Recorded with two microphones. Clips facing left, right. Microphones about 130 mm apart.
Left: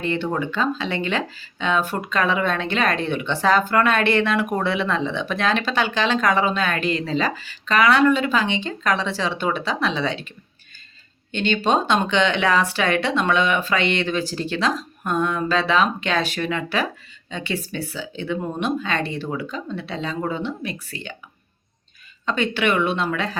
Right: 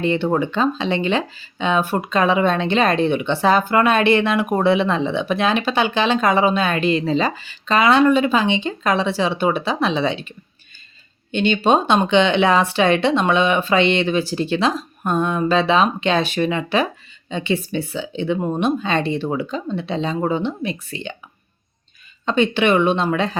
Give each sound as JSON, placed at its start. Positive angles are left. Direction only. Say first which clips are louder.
{"t": 0.0, "sound": "speech", "louder": "right 5 dB", "side_deg": -20}
{"t": 22.3, "sound": "speech", "louder": "right 5 dB", "side_deg": -20}